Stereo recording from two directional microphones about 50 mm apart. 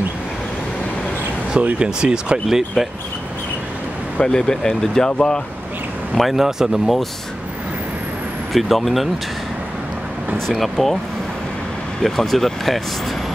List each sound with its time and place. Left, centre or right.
1.6 s speech: right
2.4 s speech: centre
4.2 s speech: centre
6.1 s speech: centre
8.5 s speech: centre
10.5 s speech: centre
12.0 s speech: centre